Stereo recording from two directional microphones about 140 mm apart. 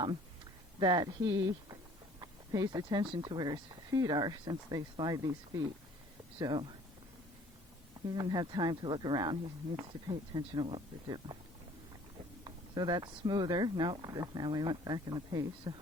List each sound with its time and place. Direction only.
0.8 s speech: 30° right (ahead or behind)
8.1 s speech: 30° right (ahead or behind)
12.5 s speech: 30° right (ahead or behind)